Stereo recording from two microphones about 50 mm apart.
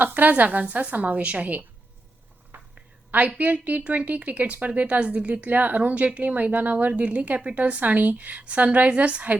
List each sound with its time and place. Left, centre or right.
0.0 s a woman's voice: right
2.5 s a sound: right
3.1 s a woman's voice: right